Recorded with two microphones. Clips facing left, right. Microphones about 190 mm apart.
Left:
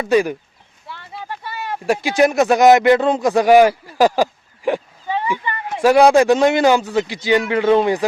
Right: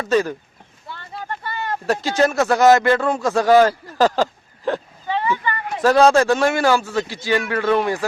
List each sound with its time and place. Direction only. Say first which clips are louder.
0.0 s speech: left 3 dB; 15° left (ahead or behind)
0.9 s speech: even; centre (ahead or behind); by 8.0 s 20° left (ahead or behind)